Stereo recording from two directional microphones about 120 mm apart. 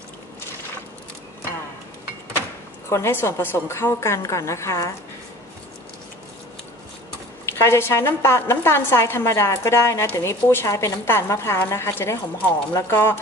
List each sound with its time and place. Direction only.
2.9 s a woman's voice: 20° left (ahead or behind)
7.4 s a woman's voice: 20° left (ahead or behind)